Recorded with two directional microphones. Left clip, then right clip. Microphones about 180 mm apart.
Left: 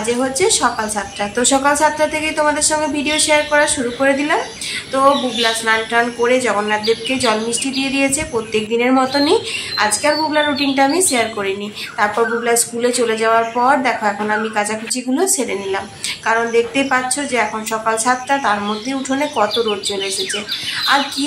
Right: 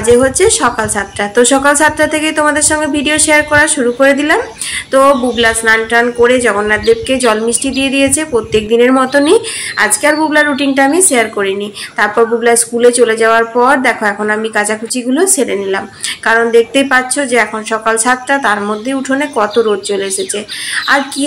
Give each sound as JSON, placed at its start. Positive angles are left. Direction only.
{"t": 0.0, "sound": "a woman's voice", "side_deg": -20}